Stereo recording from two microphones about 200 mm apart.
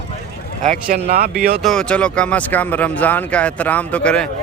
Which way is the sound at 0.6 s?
40° right (ahead or behind).